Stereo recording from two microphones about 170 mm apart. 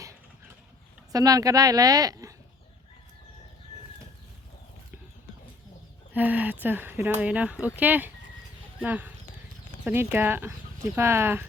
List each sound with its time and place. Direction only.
1.1 s speech: 20° right (ahead or behind)
6.1 s speech: 10° right (ahead or behind)